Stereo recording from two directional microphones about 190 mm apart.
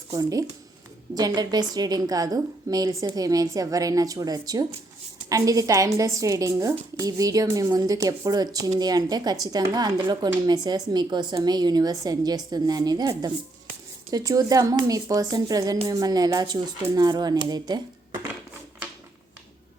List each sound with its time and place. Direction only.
0.1 s a woman's voice: 20° right (ahead or behind)